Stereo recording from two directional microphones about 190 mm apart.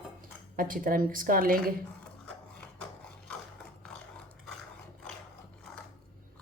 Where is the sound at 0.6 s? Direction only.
45° right (ahead or behind).